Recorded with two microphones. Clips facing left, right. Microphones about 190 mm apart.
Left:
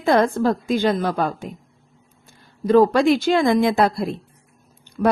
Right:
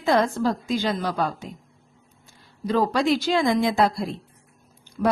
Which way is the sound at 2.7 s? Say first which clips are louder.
Left 7 dB; 50° left (ahead or behind).